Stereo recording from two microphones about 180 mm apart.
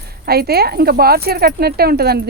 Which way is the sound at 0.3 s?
60° right (ahead or behind).